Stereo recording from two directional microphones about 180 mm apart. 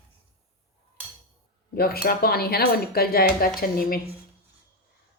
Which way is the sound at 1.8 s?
55° left (ahead or behind).